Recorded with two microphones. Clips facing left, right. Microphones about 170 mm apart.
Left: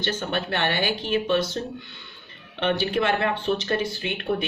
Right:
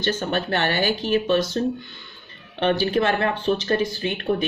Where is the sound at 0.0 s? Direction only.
40° right (ahead or behind).